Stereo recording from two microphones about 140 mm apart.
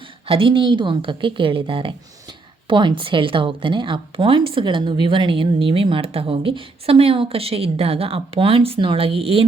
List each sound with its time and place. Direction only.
0.3 s speech: 40° right (ahead or behind)